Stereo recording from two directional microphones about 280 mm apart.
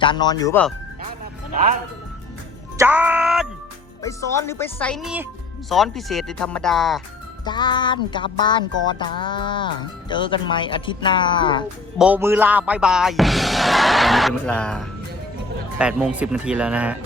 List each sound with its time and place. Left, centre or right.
0.0 s music: centre
2.7 s music: centre
4.0 s music: centre
5.6 s speech: centre
7.4 s music: centre
11.9 s speech: centre